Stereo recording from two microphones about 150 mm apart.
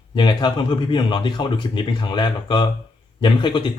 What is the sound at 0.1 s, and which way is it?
Speech, 30° left (ahead or behind).